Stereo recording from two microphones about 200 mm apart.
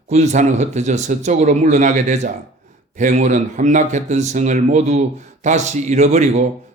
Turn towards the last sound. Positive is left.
turn(degrees=-35)  # may be behind; listen again after turning